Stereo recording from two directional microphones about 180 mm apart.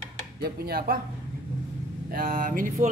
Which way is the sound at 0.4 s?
55° right (ahead or behind).